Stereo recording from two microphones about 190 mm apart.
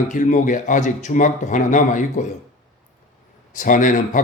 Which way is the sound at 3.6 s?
45° left (ahead or behind).